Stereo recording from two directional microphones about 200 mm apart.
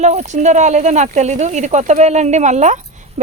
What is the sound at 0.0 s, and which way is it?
Speech, 35° right (ahead or behind).